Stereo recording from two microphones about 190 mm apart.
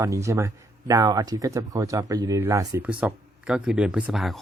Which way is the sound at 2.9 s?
5° right (ahead or behind).